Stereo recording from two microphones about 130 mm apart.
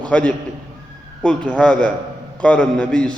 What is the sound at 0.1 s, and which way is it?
A man's voice, 10° left (ahead or behind).